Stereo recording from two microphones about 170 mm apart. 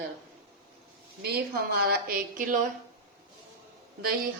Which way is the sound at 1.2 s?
70° right (ahead or behind).